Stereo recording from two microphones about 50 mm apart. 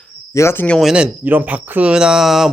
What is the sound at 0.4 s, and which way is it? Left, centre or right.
Speech, left.